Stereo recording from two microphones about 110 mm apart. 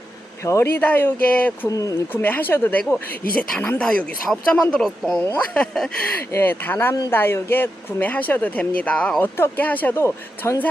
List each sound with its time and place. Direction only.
0.4 s speech: 25° left (ahead or behind)
0.8 s speech: 15° left (ahead or behind)
1.7 s speech: 30° left (ahead or behind)
2.2 s speech: 15° left (ahead or behind)
5.2 s speech: 20° left (ahead or behind)